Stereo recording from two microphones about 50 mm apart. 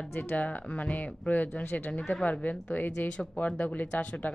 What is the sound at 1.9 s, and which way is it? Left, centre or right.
Speech, centre.